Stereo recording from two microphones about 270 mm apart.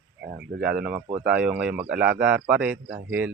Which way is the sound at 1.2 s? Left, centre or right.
Centre.